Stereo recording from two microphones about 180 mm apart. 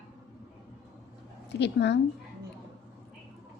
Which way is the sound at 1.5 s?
70° left (ahead or behind).